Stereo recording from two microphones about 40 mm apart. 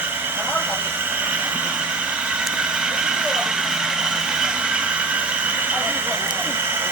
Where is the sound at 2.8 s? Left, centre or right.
Right.